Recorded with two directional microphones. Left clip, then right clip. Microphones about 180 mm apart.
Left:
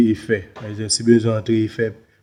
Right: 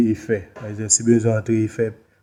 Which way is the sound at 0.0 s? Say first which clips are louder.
Left 2 dB; 5° right (ahead or behind).